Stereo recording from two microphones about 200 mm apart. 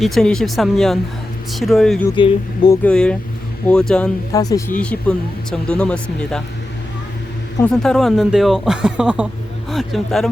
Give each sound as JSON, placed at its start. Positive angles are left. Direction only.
{"t": 0.0, "sound": "speech", "side_deg": 0}
{"t": 2.1, "sound": "speech", "side_deg": 25}
{"t": 2.8, "sound": "speech", "side_deg": 5}
{"t": 4.3, "sound": "speech", "side_deg": 15}
{"t": 4.8, "sound": "speech", "side_deg": 5}
{"t": 7.6, "sound": "speech", "side_deg": 5}